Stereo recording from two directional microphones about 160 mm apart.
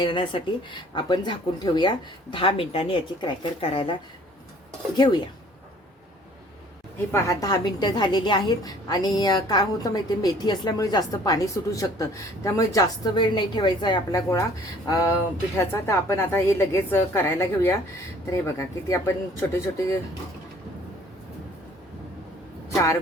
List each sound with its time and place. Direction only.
0.0 s speech: 30° left (ahead or behind)
4.9 s a woman's voice: 25° left (ahead or behind)
7.1 s a woman's voice: 20° left (ahead or behind)
22.7 s a woman's voice: 20° left (ahead or behind)